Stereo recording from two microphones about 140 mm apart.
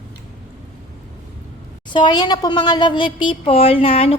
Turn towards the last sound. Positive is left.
turn(degrees=45)  # may be behind; listen again after turning